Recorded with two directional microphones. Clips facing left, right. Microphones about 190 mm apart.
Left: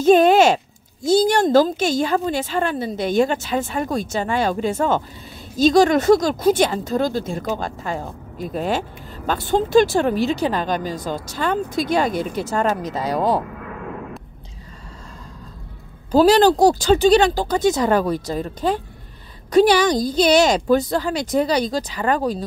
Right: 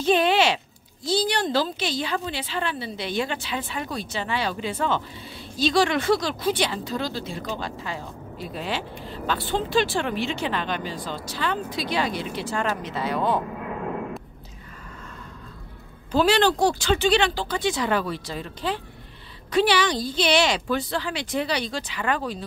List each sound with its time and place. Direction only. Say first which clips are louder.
0.0 s speech: left 8 dB; 45° left (ahead or behind)
16.1 s speech: left 7 dB; 40° left (ahead or behind)